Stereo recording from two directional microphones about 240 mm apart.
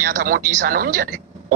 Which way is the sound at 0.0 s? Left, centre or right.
Right.